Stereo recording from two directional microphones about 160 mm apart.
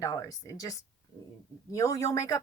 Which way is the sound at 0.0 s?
20° left (ahead or behind).